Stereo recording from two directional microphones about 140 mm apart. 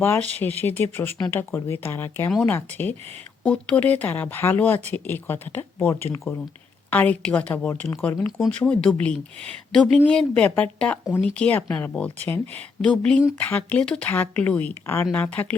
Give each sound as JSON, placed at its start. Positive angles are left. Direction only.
{"t": 0.0, "sound": "speech", "side_deg": 15}